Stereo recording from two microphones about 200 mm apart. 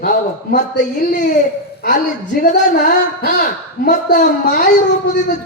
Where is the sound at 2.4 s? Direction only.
40° left (ahead or behind).